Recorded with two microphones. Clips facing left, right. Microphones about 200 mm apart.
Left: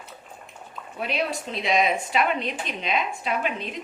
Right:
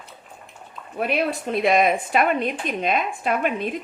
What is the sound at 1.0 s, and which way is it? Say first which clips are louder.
A woman's voice: right 5 dB; 55° right (ahead or behind).